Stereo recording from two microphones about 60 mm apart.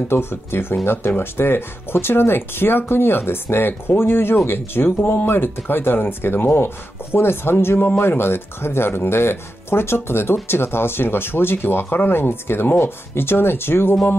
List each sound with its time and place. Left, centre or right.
0.1 s speech: left